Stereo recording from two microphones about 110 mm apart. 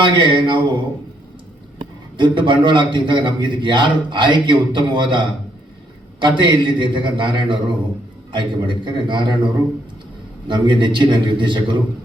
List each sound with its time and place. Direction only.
0.0 s a man's voice: 50° right (ahead or behind)
2.1 s a man's voice: 50° right (ahead or behind)
10.5 s a man's voice: 45° right (ahead or behind)